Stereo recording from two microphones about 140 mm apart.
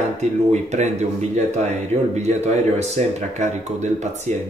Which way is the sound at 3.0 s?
50° right (ahead or behind).